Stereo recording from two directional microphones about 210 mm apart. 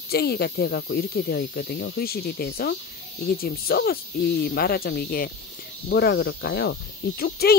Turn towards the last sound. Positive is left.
turn(degrees=50)  # may be behind; listen again after turning